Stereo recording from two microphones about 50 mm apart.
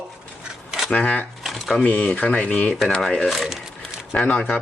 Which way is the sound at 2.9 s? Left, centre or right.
Centre.